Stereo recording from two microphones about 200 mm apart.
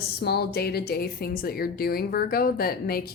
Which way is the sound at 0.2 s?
50° left (ahead or behind).